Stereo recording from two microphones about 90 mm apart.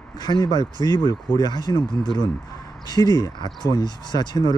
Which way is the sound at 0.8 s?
45° left (ahead or behind).